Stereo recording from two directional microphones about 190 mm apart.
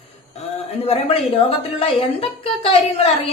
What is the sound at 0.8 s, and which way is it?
A woman's voice, 30° left (ahead or behind).